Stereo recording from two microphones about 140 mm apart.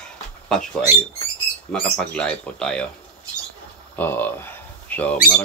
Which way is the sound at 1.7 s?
5° left (ahead or behind).